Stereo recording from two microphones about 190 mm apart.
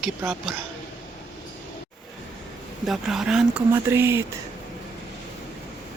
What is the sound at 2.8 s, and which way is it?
Speech, centre (ahead or behind).